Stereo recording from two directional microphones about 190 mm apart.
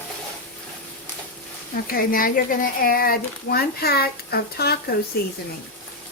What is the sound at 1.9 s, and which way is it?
Speech, 50° left (ahead or behind).